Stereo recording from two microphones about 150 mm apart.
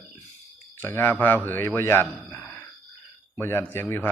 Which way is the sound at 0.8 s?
15° left (ahead or behind).